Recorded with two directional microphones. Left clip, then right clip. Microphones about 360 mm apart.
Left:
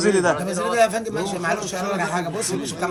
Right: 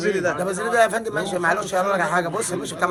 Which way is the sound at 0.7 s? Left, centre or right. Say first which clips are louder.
Right 1 dB; centre.